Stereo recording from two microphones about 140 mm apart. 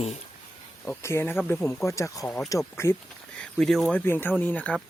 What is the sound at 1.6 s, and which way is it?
Speech, 5° left (ahead or behind).